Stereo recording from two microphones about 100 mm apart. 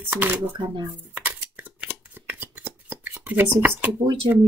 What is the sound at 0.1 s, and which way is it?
Speech, 20° right (ahead or behind).